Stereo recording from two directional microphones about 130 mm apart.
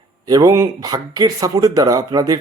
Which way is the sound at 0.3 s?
25° right (ahead or behind).